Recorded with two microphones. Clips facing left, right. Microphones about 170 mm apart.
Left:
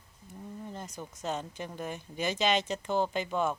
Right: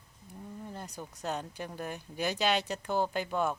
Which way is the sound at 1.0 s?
10° right (ahead or behind).